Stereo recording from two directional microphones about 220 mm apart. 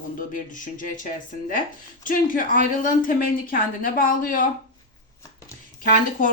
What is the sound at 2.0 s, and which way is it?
Speech, 40° left (ahead or behind).